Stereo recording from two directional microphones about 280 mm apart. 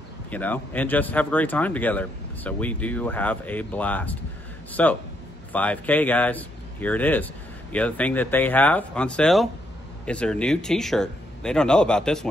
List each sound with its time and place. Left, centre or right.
0.3 s speech: centre